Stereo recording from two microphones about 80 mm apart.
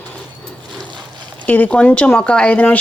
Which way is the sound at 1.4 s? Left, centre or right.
Centre.